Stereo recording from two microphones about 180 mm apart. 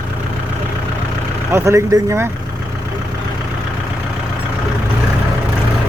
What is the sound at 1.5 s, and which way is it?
Speech, 15° right (ahead or behind).